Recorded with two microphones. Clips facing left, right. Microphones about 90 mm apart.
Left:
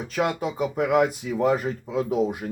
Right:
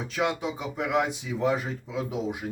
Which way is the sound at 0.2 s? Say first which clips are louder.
Left 4 dB; 45° left (ahead or behind).